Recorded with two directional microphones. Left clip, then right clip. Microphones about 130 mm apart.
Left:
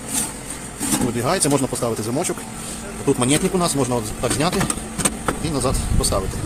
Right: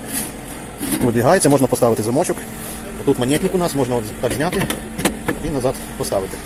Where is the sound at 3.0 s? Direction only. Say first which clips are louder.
Right 2 dB; 35° left (ahead or behind).